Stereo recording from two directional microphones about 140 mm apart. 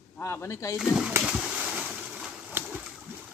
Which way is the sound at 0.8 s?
5° right (ahead or behind).